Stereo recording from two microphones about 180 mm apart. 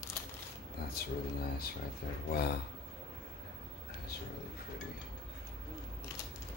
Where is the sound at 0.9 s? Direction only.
55° left (ahead or behind).